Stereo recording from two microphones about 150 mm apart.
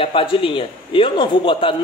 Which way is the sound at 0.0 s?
35° left (ahead or behind).